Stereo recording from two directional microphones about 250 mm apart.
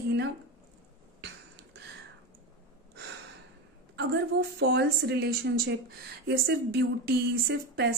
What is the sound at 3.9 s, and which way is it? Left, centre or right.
Speech, right.